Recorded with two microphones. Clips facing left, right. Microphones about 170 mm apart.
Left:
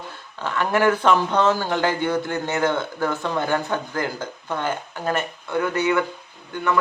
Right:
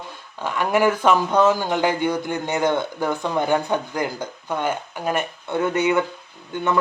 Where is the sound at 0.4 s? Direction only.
15° right (ahead or behind).